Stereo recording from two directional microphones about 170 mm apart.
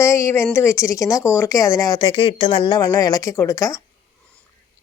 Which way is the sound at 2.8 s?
20° left (ahead or behind).